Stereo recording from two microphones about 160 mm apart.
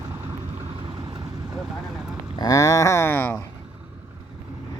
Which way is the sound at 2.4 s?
20° left (ahead or behind).